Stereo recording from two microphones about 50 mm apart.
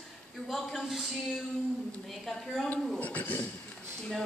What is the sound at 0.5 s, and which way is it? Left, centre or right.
Speech, centre.